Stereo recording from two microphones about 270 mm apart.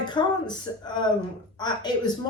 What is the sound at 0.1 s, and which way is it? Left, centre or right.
Speech, centre.